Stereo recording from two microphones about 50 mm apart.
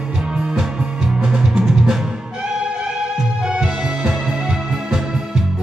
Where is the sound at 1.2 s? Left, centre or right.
Centre.